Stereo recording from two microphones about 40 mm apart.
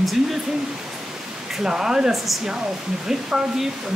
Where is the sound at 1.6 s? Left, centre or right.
Centre.